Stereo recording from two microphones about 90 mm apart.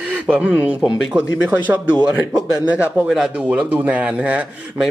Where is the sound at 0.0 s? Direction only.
15° right (ahead or behind).